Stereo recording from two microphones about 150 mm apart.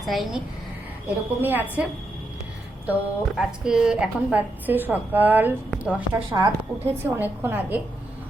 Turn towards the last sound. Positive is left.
turn(degrees=-15)  # may be behind; listen again after turning